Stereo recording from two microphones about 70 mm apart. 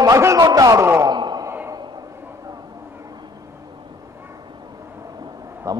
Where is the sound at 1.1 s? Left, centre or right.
Right.